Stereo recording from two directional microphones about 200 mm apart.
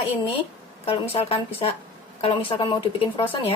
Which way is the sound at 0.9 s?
30° left (ahead or behind).